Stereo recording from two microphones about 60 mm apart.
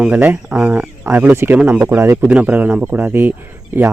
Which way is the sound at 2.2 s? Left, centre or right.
Right.